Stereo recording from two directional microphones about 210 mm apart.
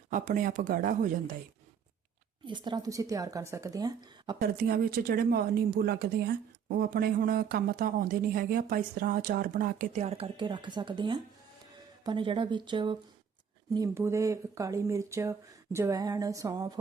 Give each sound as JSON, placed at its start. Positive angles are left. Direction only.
{"t": 0.1, "sound": "speech", "side_deg": -40}
{"t": 2.5, "sound": "speech", "side_deg": -20}
{"t": 4.4, "sound": "speech", "side_deg": -45}